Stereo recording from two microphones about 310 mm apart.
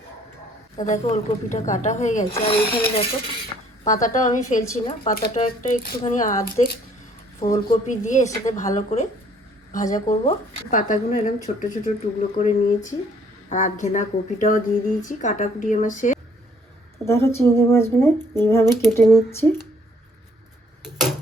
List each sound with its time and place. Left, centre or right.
0.9 s speech: centre
17.1 s speech: centre
20.8 s a sound: centre